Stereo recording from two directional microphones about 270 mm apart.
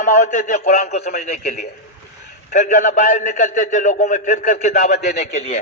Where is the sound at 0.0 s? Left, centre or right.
Left.